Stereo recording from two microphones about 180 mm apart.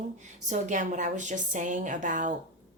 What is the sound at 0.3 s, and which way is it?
Speech, 40° right (ahead or behind).